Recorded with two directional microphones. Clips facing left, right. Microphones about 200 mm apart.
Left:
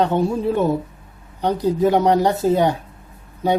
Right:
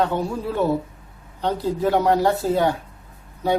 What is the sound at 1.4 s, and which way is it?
Speech, 15° left (ahead or behind).